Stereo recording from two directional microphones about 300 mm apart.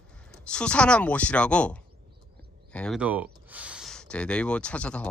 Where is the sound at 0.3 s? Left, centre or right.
Centre.